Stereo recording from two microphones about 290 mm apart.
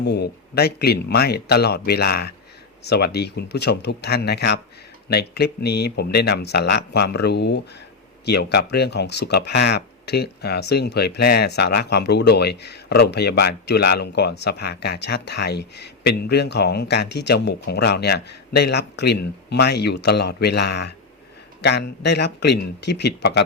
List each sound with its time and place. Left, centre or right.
0.0 s speech: left